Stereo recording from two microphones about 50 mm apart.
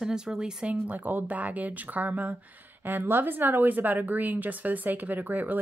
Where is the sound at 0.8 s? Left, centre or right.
Right.